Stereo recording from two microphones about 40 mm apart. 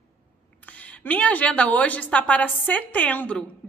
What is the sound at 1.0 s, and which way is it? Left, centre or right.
A woman's voice, left.